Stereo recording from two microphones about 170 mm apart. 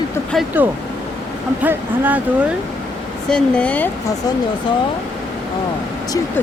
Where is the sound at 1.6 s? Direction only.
10° right (ahead or behind).